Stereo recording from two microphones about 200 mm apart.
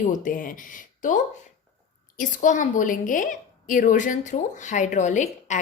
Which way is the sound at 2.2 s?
40° left (ahead or behind).